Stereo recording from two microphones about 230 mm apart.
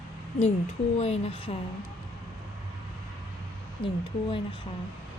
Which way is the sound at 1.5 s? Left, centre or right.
Left.